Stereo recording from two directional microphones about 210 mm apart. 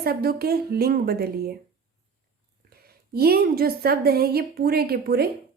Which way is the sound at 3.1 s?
45° right (ahead or behind).